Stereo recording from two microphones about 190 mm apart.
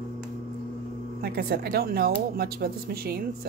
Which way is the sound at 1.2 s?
55° right (ahead or behind).